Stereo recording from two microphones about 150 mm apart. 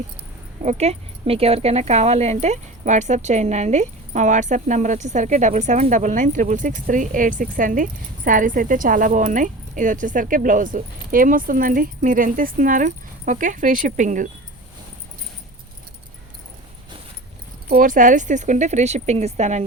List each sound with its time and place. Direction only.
0.6 s speech: 45° right (ahead or behind)
17.7 s speech: 65° right (ahead or behind); by 19.6 s 50° right (ahead or behind)